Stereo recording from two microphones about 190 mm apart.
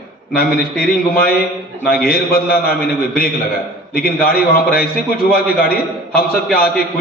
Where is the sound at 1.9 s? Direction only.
50° left (ahead or behind).